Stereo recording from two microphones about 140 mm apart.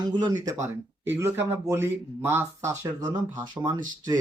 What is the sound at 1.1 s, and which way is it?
Speech, 15° right (ahead or behind).